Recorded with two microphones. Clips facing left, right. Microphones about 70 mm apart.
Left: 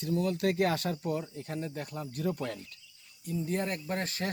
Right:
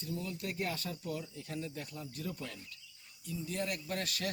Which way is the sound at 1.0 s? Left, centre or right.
Left.